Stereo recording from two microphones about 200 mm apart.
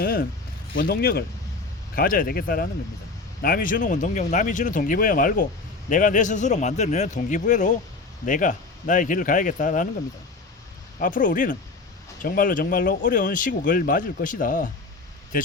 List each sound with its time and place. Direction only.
0.0 s a sound: 50° left (ahead or behind)
0.8 s speech: 50° left (ahead or behind)
11.0 s speech: 40° left (ahead or behind)